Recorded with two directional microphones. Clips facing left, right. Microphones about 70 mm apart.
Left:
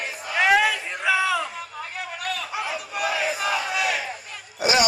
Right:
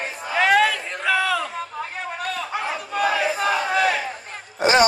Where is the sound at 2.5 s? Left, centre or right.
Right.